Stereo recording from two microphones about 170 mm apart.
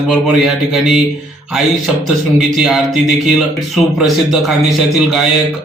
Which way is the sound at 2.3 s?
Centre (ahead or behind).